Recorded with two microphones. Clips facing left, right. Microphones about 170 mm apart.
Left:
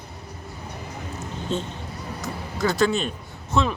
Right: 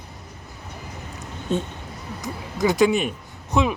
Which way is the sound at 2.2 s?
15° right (ahead or behind).